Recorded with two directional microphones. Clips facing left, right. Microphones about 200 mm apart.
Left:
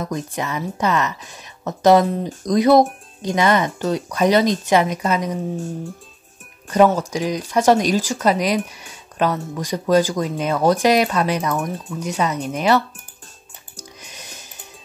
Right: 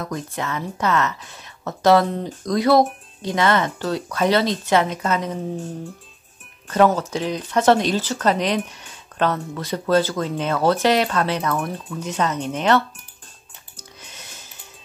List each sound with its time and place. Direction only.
0.0 s speech: 15° left (ahead or behind)
7.0 s speech: 10° left (ahead or behind)
13.7 s music: 15° left (ahead or behind)